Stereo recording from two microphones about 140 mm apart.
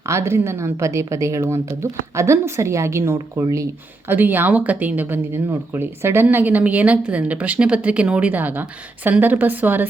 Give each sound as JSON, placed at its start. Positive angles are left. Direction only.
{"t": 0.0, "sound": "a woman's voice", "side_deg": -20}